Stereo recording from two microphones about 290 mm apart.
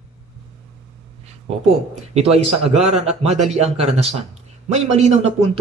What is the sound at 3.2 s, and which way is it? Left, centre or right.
Speech, right.